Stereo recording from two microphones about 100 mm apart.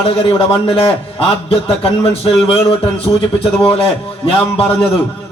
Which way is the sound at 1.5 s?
70° left (ahead or behind).